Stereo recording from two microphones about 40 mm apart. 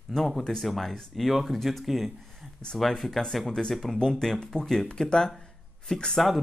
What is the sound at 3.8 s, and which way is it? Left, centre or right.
Speech, centre.